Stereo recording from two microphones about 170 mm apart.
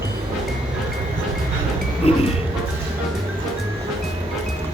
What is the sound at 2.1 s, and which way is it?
Music, 35° left (ahead or behind).